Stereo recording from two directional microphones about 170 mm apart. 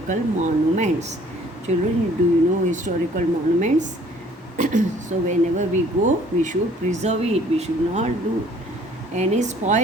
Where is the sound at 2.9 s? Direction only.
50° right (ahead or behind).